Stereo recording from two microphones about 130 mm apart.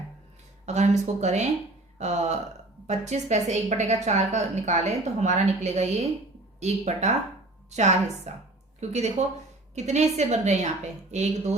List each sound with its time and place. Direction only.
0.6 s a woman's voice: 60° right (ahead or behind)